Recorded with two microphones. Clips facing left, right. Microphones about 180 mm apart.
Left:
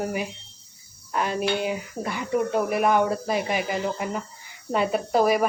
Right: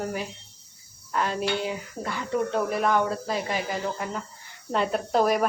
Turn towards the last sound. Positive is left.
turn(degrees=5)  # may be behind; listen again after turning